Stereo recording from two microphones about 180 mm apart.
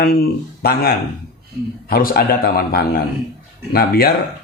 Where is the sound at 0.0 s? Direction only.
55° left (ahead or behind).